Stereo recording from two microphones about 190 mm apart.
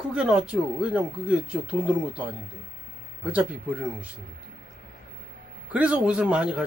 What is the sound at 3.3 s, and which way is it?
Speech, 5° right (ahead or behind).